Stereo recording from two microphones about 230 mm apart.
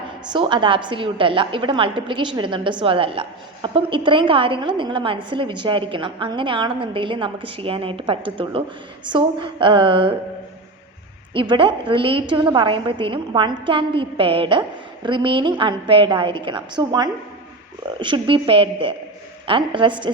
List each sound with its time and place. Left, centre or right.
0.3 s a woman's voice: right
11.3 s a woman's voice: right